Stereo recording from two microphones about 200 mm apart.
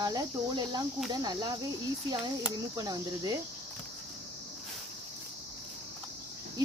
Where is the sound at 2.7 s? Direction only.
20° right (ahead or behind).